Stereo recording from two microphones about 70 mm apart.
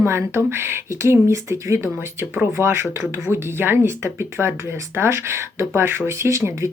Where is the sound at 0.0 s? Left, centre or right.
Right.